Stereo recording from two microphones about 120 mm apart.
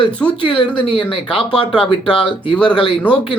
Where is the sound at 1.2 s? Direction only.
10° left (ahead or behind).